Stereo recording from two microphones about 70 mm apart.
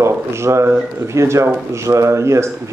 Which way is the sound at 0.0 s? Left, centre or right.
Right.